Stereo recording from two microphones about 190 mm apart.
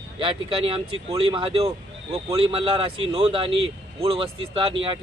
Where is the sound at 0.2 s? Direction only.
30° right (ahead or behind).